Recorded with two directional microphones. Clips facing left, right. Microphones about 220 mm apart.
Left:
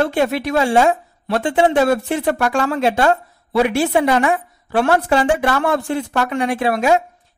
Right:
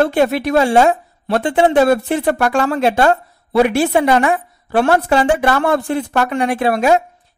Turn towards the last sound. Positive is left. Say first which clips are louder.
# right 2 dB
turn(degrees=-55)  # may be behind; listen again after turning